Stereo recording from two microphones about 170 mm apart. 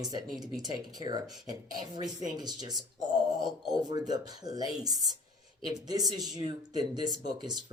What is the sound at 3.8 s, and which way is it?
Speech, 25° right (ahead or behind).